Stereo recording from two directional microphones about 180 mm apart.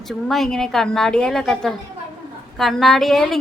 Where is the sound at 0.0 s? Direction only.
Centre (ahead or behind).